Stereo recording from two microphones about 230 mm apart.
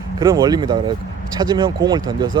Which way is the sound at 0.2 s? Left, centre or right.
Centre.